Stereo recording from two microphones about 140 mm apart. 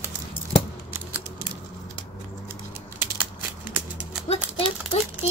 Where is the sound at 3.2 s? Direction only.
10° right (ahead or behind).